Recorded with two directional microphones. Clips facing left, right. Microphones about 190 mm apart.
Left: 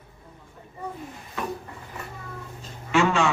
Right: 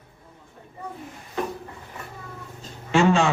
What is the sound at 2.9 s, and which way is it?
Speech, 30° right (ahead or behind).